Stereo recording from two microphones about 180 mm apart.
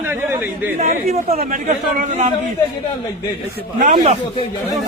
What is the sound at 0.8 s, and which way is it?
A man's voice, 40° right (ahead or behind).